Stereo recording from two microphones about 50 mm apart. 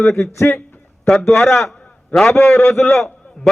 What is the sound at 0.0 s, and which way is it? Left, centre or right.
A man's voice, centre.